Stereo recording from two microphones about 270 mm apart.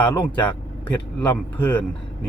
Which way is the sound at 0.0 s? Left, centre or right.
Centre.